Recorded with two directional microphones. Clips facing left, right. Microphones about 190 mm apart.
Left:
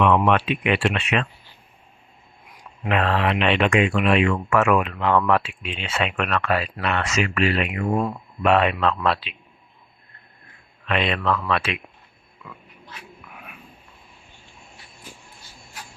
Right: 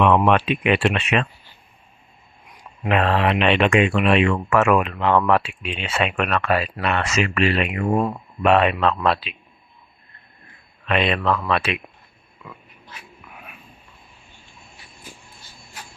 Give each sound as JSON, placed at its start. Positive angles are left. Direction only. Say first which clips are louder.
{"t": 0.0, "sound": "speech", "louder": "right 2 dB", "side_deg": -25}
{"t": 2.9, "sound": "speech", "louder": "right 2 dB", "side_deg": -20}
{"t": 5.2, "sound": "speech", "louder": "right 2 dB", "side_deg": -15}
{"t": 10.8, "sound": "speech", "louder": "right 2 dB", "side_deg": -20}